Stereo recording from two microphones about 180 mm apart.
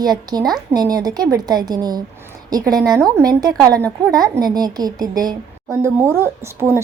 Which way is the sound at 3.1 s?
20° right (ahead or behind).